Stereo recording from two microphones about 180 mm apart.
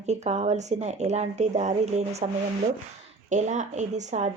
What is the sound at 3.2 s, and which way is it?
Speech, 40° right (ahead or behind).